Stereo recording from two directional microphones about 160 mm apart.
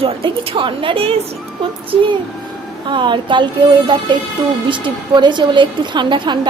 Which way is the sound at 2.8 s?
30° right (ahead or behind).